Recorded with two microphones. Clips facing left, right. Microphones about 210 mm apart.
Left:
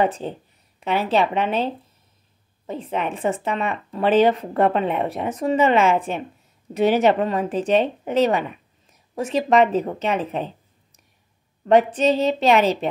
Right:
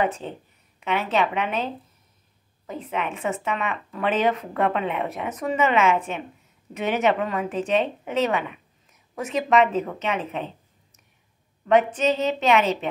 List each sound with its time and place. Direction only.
0.0 s a woman's voice: 35° left (ahead or behind)
11.6 s a woman's voice: 35° left (ahead or behind)